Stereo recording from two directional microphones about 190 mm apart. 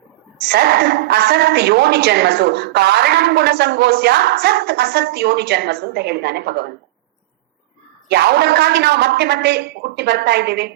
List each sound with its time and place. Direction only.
0.5 s a woman's voice: 55° right (ahead or behind)
8.0 s a woman's voice: 60° right (ahead or behind)